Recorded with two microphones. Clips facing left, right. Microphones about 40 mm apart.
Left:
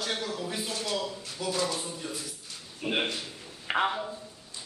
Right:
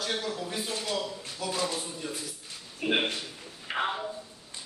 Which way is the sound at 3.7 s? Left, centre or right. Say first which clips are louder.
Left 4 dB; left.